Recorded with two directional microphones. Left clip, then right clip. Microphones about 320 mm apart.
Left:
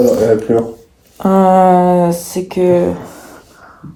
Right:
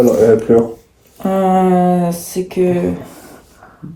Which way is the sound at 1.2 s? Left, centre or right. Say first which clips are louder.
Left 5 dB; centre.